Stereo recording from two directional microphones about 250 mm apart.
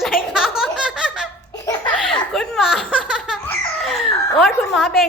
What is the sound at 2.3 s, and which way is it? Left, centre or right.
Speech, centre.